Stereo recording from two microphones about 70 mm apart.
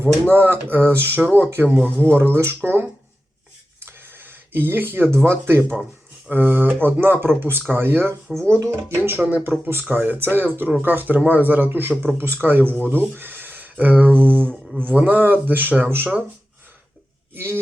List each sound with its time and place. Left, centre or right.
0.3 s speech: right
3.8 s a sound: right
5.1 s speech: right
5.7 s a sound: centre
6.3 s speech: right
8.3 s speech: centre
8.5 s speech: right
17.3 s a man's voice: right